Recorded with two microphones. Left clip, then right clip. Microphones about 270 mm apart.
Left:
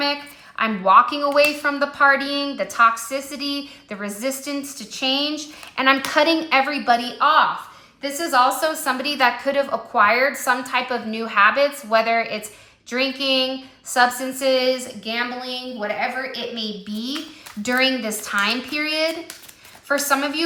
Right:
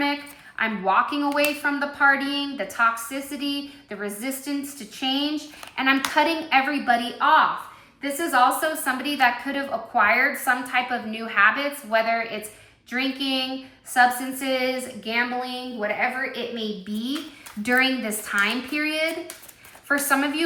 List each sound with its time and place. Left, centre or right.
0.5 s a woman's voice: centre